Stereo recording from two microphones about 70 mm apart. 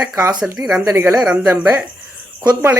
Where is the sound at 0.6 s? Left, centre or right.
Right.